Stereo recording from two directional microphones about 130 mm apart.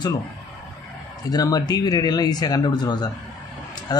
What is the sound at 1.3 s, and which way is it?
Speech, 30° left (ahead or behind).